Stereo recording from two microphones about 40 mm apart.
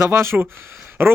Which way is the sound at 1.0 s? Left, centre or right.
Right.